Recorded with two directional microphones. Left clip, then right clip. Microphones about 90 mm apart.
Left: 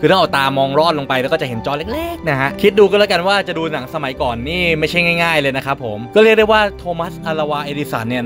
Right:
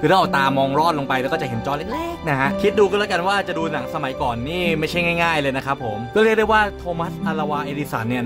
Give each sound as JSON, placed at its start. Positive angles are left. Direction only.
{"t": 0.0, "sound": "speech", "side_deg": 25}